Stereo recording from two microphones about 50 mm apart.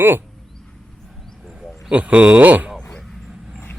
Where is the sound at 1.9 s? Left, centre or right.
Right.